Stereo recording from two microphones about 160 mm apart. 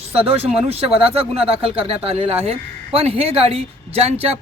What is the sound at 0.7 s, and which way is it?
Speech, 35° right (ahead or behind).